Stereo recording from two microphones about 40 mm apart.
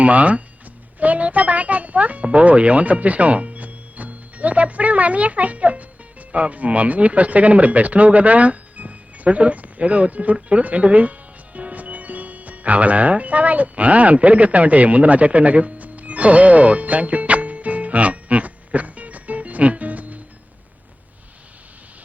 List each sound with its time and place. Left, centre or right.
0.0 s speech: right